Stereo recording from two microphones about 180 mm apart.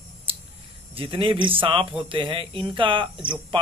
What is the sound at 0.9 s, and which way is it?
Speech, 30° right (ahead or behind).